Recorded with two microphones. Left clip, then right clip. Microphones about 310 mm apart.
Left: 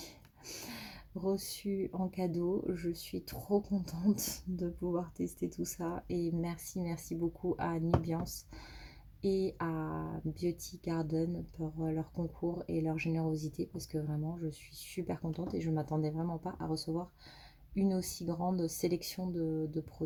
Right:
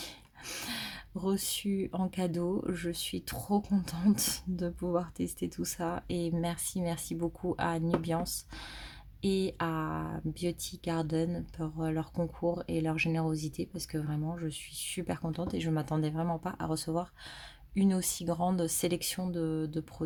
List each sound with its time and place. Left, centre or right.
0.0 s a sound: right
1.2 s speech: right
5.1 s speech: right
5.5 s speech: right
9.2 s speech: right